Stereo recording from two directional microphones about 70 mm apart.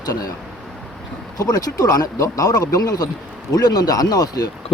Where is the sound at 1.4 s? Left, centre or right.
Left.